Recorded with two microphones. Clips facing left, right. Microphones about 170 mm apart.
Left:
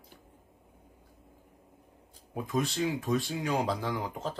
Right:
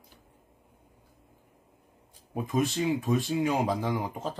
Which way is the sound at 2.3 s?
20° right (ahead or behind).